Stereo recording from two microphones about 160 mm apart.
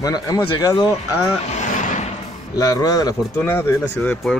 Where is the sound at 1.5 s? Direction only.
50° left (ahead or behind).